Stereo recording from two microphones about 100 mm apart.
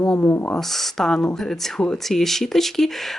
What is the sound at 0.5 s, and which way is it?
Speech, 5° left (ahead or behind).